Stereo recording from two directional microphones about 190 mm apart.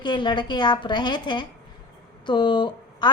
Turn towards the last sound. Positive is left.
turn(degrees=25)  # may be behind; listen again after turning